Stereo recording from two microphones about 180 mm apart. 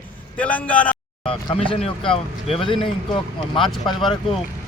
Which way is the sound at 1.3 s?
30° left (ahead or behind).